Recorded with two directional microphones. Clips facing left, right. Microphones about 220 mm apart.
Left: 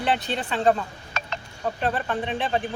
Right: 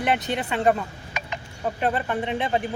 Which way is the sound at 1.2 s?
15° right (ahead or behind).